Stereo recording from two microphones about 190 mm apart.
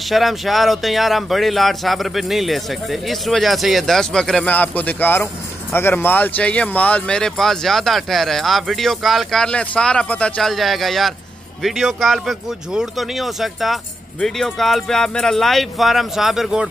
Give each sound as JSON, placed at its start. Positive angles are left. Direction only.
{"t": 0.1, "sound": "speech", "side_deg": 0}